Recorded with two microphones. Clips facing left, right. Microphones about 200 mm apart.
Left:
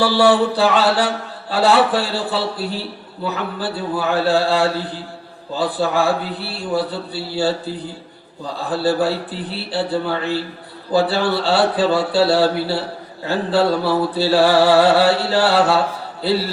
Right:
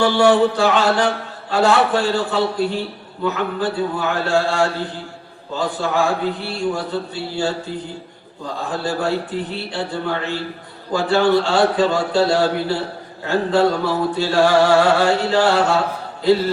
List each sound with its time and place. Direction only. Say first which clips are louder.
0.0 s music: right 1 dB; 35° left (ahead or behind)
8.7 s music: left 4 dB; 35° left (ahead or behind)